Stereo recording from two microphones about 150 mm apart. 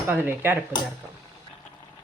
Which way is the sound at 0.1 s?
15° right (ahead or behind).